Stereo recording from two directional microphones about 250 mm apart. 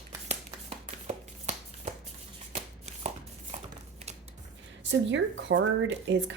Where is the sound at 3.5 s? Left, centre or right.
Right.